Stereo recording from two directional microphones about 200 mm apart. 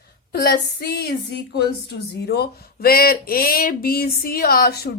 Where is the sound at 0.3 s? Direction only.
50° left (ahead or behind).